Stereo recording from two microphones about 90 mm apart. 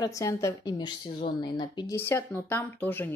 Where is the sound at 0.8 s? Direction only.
60° left (ahead or behind).